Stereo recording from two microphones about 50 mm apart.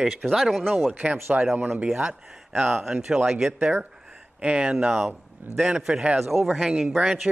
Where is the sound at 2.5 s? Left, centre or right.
Centre.